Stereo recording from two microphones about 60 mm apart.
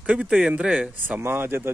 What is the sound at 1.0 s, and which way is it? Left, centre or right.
Speech, right.